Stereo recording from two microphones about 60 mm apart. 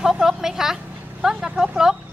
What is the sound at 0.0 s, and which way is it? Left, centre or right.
Vehicle, centre.